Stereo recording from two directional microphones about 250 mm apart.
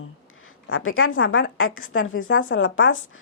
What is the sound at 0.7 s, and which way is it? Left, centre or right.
A woman's voice, left.